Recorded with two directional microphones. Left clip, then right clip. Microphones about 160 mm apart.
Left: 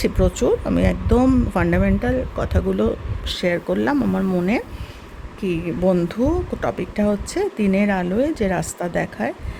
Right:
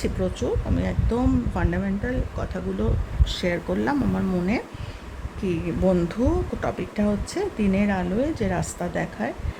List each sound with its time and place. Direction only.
0.0 s speech: 45° left (ahead or behind)
5.4 s speech: 30° left (ahead or behind)